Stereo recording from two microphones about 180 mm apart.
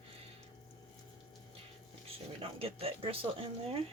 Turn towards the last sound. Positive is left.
turn(degrees=-30)  # may be behind; listen again after turning